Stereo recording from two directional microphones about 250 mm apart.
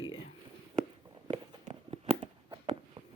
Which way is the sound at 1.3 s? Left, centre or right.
Right.